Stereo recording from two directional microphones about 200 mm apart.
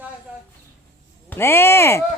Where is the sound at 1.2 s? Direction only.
10° left (ahead or behind).